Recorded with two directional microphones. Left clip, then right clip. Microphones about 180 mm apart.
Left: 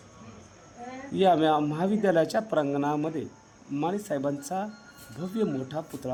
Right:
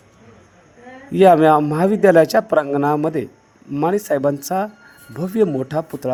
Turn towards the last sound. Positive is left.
turn(degrees=-40)  # may be behind; listen again after turning